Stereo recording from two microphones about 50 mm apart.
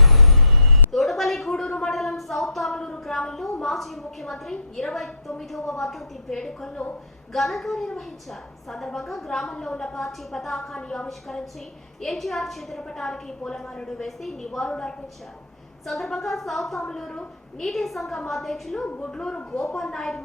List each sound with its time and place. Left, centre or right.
0.0 s vehicle: centre
0.9 s a sound: centre
2.8 s a woman's voice: centre
10.8 s a woman's voice: centre
12.0 s a woman's voice: centre
15.9 s a woman's voice: centre
16.8 s a woman's voice: centre